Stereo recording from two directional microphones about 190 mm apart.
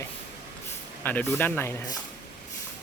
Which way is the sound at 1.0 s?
10° left (ahead or behind).